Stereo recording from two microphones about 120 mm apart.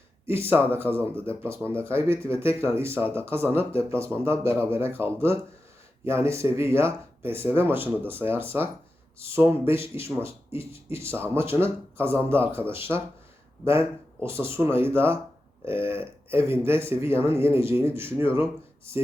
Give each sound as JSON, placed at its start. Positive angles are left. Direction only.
{"t": 0.3, "sound": "speech", "side_deg": -20}